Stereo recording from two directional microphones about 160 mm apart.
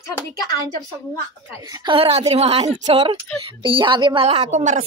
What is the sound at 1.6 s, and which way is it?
A woman's voice, 25° right (ahead or behind).